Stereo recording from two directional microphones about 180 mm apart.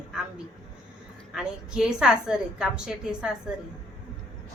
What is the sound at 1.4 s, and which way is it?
Speech, 5° right (ahead or behind).